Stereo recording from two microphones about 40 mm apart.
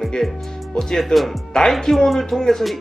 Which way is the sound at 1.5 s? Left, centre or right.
Centre.